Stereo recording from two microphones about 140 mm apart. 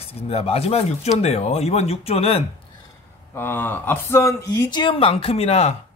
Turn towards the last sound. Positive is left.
turn(degrees=50)  # may be behind; listen again after turning